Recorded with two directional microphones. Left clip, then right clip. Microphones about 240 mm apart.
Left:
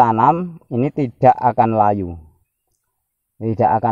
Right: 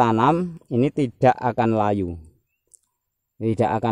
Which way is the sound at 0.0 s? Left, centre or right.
Right.